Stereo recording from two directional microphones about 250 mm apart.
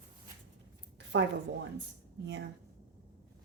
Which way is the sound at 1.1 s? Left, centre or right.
Right.